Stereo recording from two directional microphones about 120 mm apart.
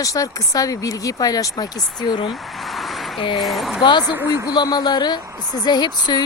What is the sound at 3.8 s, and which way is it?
Speech, 40° left (ahead or behind).